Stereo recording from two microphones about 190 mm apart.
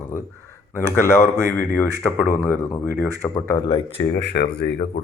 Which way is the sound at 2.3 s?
10° left (ahead or behind).